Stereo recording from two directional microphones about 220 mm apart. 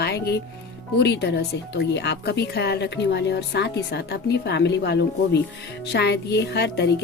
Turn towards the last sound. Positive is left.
turn(degrees=50)  # may be behind; listen again after turning